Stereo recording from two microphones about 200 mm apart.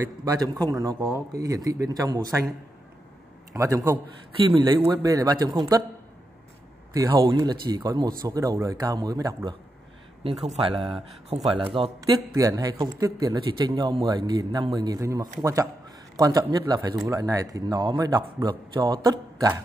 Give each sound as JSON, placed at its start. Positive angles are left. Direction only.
{"t": 0.0, "sound": "speech", "side_deg": -15}
{"t": 3.5, "sound": "speech", "side_deg": -15}
{"t": 4.5, "sound": "a man's voice", "side_deg": -25}
{"t": 6.9, "sound": "speech", "side_deg": -15}
{"t": 10.8, "sound": "a man's voice", "side_deg": -30}